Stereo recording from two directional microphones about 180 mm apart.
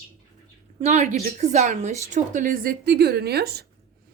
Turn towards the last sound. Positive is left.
turn(degrees=-65)  # may be behind; listen again after turning